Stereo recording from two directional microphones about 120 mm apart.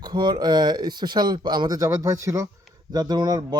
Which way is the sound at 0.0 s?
35° right (ahead or behind).